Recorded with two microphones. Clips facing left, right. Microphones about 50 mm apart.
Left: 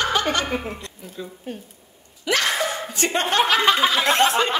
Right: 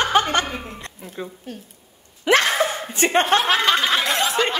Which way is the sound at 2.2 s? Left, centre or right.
Right.